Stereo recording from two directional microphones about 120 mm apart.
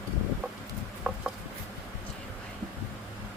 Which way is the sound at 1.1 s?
10° right (ahead or behind).